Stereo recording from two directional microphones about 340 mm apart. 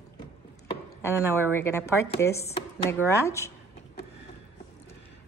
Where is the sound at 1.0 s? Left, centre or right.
Centre.